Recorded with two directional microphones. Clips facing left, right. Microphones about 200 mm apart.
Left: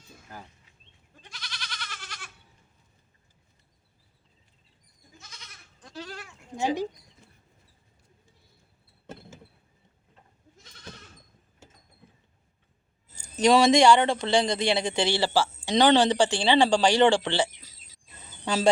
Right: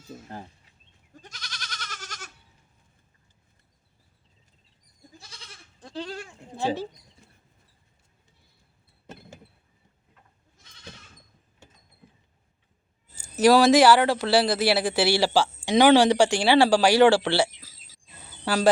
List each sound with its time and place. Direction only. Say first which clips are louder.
0.1 s bird: right 13 dB; 45° right (ahead or behind)
1.1 s goat: right 2 dB; 45° right (ahead or behind)
5.1 s goat: right 2 dB; 30° right (ahead or behind)
6.6 s speech: even; 15° left (ahead or behind)
13.1 s speech: right 3 dB; 5° right (ahead or behind)